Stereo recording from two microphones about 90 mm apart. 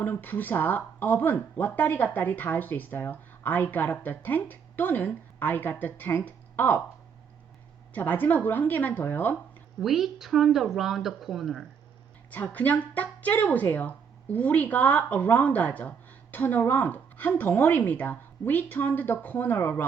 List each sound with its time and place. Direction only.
0.0 s speech: 20° left (ahead or behind)
7.9 s speech: 20° left (ahead or behind)
9.8 s speech: 5° right (ahead or behind)
12.3 s speech: 15° left (ahead or behind)